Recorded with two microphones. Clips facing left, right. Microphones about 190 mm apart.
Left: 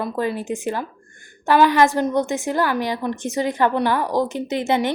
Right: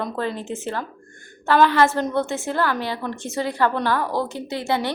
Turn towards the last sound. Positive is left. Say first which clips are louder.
# left 4 dB
turn(degrees=20)  # may be behind; listen again after turning